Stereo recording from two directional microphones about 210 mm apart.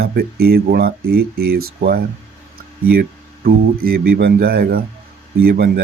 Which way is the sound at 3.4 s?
45° right (ahead or behind).